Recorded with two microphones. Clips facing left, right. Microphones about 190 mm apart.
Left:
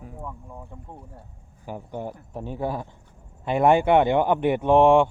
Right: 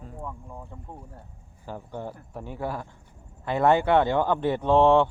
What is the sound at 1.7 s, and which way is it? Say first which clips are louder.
Speech: left 3 dB; 15° left (ahead or behind).